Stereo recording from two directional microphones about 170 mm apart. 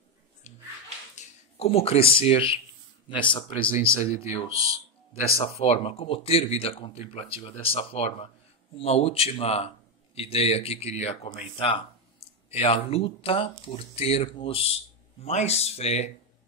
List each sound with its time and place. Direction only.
1.1 s speech: 35° left (ahead or behind)
5.4 s speech: 35° left (ahead or behind)
11.5 s speech: 30° left (ahead or behind)